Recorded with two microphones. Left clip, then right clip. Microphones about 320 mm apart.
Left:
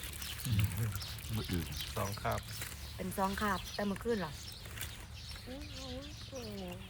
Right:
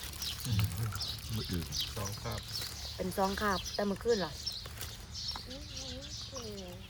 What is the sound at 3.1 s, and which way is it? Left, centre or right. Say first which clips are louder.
Speech: right 2 dB; right.